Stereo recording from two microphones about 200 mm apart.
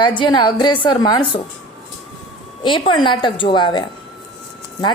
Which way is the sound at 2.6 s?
25° left (ahead or behind).